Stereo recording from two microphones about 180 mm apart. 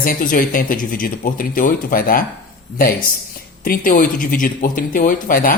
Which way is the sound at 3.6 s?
50° left (ahead or behind).